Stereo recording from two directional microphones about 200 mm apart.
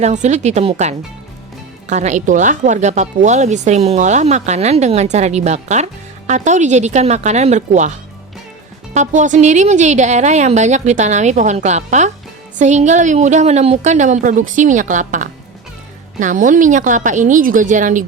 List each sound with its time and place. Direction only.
0.0 s speech: 35° right (ahead or behind)